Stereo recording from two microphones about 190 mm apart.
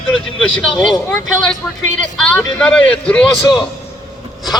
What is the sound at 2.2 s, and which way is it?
Speech, 5° left (ahead or behind).